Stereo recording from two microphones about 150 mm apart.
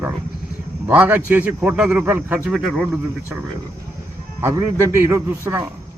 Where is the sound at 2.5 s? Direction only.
Centre (ahead or behind).